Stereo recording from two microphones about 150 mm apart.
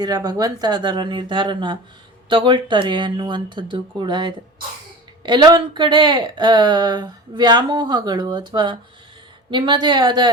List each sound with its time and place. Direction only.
0.0 s speech: 25° right (ahead or behind)